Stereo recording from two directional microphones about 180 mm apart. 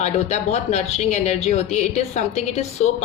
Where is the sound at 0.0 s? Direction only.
35° left (ahead or behind).